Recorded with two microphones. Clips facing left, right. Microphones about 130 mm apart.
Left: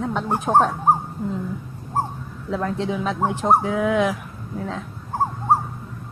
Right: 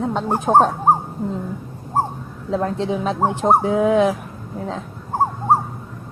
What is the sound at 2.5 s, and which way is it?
Speech, 35° right (ahead or behind).